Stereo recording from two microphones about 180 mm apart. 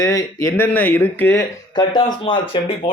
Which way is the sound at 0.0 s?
20° left (ahead or behind).